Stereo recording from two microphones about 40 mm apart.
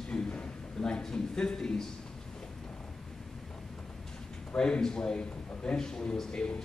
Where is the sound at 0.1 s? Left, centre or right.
Left.